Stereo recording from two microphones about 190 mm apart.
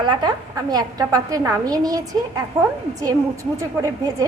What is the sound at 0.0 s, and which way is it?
A woman's voice, 20° right (ahead or behind).